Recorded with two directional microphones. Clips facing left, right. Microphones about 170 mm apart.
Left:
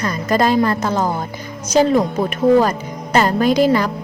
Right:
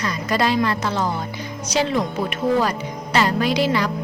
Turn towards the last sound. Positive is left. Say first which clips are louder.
# left 5 dB
turn(degrees=45)  # may be behind; listen again after turning